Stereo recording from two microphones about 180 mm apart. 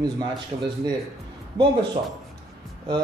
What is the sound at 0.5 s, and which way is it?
Speech, 35° right (ahead or behind).